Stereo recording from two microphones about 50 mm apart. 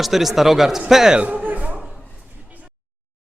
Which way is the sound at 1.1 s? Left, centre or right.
Right.